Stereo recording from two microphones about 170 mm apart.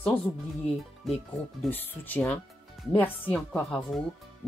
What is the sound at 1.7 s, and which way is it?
Speech, 10° left (ahead or behind).